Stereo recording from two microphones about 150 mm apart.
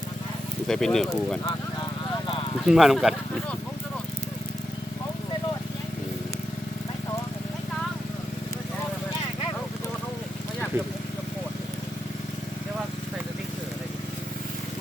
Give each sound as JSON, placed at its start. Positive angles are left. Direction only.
{"t": 0.7, "sound": "speech", "side_deg": 5}
{"t": 2.6, "sound": "speech", "side_deg": 0}